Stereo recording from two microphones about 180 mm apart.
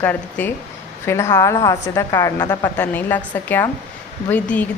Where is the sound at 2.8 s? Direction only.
10° left (ahead or behind).